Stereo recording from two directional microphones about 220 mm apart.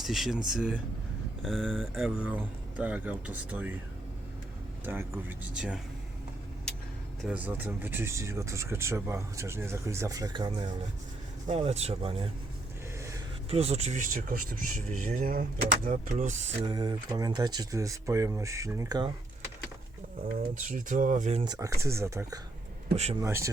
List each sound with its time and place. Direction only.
0.0 s speech: centre (ahead or behind)
4.9 s speech: 10° right (ahead or behind)
7.2 s speech: 5° right (ahead or behind); by 12.3 s 25° right (ahead or behind)
13.0 s a sound: 15° right (ahead or behind)
13.5 s speech: 25° right (ahead or behind)
20.2 s speech: 35° right (ahead or behind); by 23.5 s 15° right (ahead or behind)